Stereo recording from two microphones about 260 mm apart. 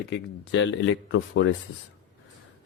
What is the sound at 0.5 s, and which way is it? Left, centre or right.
Speech, left.